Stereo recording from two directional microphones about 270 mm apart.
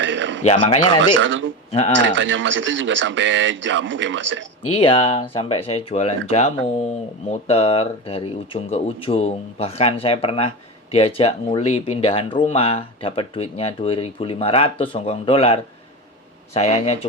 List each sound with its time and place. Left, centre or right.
0.0 s a sound: right
0.4 s speech: left
0.9 s speech: right
4.7 s speech: centre
7.3 s speech: left